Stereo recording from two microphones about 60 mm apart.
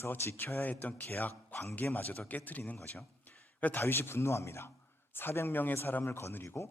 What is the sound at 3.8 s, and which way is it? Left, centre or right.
A man's voice, left.